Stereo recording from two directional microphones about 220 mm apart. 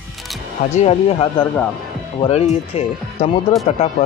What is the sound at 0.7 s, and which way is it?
Speech, 30° left (ahead or behind).